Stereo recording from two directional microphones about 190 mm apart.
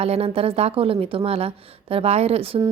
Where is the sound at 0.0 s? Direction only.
30° right (ahead or behind).